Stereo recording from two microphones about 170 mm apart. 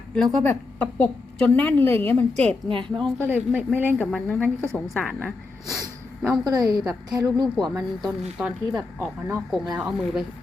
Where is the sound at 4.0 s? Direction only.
10° left (ahead or behind).